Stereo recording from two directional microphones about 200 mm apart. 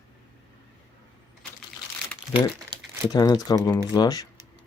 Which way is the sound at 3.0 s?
20° left (ahead or behind).